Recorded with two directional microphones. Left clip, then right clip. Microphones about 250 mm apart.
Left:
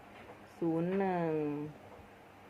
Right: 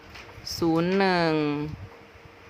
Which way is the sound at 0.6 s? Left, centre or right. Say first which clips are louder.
Right 10 dB; right.